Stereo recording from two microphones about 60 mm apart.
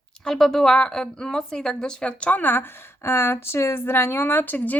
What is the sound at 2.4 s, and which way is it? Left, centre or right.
Speech, left.